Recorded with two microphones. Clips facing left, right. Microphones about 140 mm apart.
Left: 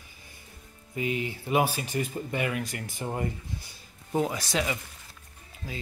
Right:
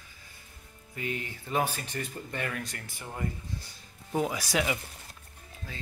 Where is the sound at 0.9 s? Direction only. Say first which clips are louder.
Left 6 dB; 15° left (ahead or behind).